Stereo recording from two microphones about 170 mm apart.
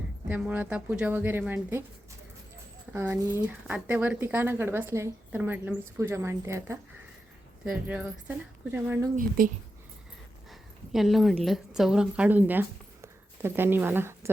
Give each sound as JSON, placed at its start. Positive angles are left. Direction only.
{"t": 0.3, "sound": "a woman's voice", "side_deg": -10}
{"t": 2.9, "sound": "a woman's voice", "side_deg": -10}
{"t": 9.1, "sound": "a woman's voice", "side_deg": -55}
{"t": 10.5, "sound": "a woman's voice", "side_deg": 0}